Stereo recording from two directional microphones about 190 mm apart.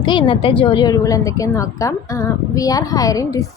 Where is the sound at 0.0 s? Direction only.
25° left (ahead or behind).